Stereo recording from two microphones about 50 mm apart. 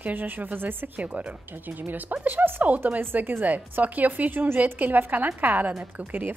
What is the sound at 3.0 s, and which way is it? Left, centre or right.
A woman's voice, right.